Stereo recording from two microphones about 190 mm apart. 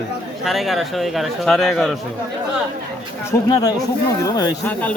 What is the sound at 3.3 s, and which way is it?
Speech, 20° left (ahead or behind).